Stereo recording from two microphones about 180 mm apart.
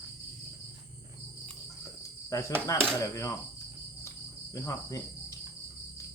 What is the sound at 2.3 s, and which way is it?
Cricket, 20° left (ahead or behind).